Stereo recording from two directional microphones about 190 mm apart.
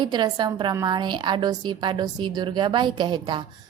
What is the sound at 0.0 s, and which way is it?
A woman's voice, 25° right (ahead or behind).